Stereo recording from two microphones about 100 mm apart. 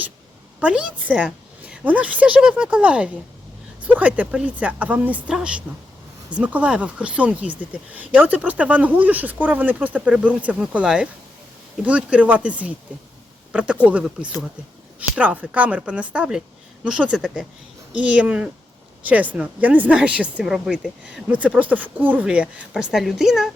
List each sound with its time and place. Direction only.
0.6 s speech: 10° right (ahead or behind)